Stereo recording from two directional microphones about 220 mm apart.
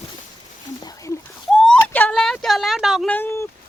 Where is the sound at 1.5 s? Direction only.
5° left (ahead or behind).